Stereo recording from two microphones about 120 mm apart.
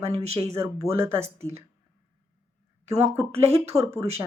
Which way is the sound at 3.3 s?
60° right (ahead or behind).